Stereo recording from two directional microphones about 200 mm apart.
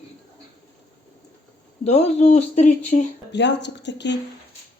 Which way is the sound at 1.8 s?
35° left (ahead or behind).